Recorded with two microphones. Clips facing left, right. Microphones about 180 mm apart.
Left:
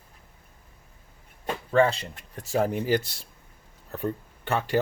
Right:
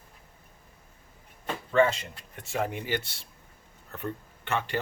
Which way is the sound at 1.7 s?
35° left (ahead or behind).